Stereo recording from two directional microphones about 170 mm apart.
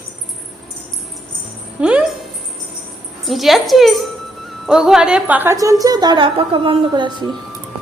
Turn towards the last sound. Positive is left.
turn(degrees=-25)  # may be behind; listen again after turning